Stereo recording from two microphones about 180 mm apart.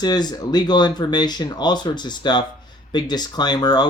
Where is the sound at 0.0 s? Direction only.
20° left (ahead or behind).